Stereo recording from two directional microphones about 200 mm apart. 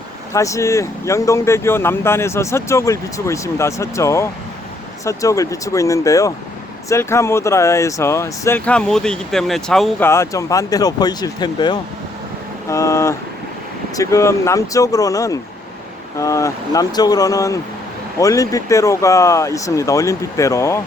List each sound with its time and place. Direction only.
0.3 s speech: 15° left (ahead or behind)
10.1 s speech: 15° left (ahead or behind)